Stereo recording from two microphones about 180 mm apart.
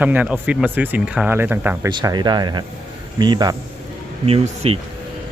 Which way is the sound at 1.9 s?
25° right (ahead or behind).